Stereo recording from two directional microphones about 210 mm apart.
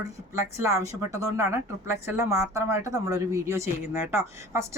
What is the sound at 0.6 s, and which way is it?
A woman's voice, 15° right (ahead or behind).